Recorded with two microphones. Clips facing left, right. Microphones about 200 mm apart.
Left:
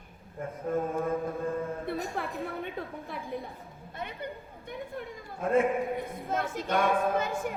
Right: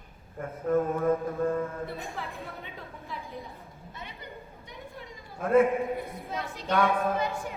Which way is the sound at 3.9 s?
55° left (ahead or behind).